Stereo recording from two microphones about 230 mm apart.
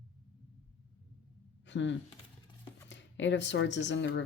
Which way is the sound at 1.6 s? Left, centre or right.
Left.